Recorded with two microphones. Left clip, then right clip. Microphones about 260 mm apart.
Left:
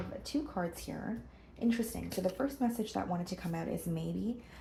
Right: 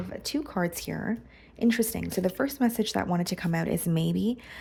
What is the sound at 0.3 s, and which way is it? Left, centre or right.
Speech, right.